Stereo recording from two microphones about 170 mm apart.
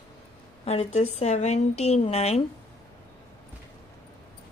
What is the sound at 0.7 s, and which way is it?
A woman's voice, 40° left (ahead or behind).